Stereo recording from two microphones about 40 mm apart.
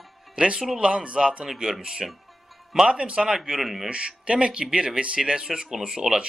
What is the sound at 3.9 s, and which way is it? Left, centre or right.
A man's voice, right.